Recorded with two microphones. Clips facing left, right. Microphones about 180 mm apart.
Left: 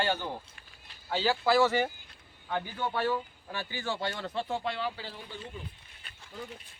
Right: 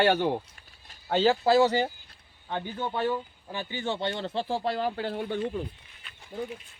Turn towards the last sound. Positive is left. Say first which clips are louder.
# right 13 dB
turn(degrees=-60)  # may be behind; listen again after turning